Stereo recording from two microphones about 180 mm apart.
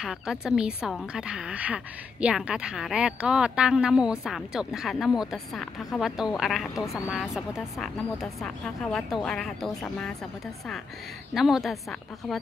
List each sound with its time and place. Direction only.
0.0 s a woman's voice: 5° right (ahead or behind)
6.7 s speech: 15° left (ahead or behind)
7.1 s a woman's voice: 5° right (ahead or behind)
11.3 s a woman's voice: centre (ahead or behind)